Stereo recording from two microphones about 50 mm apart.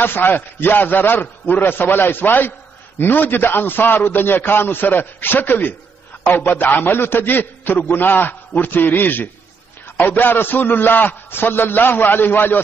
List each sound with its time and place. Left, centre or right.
0.0 s a man's voice: left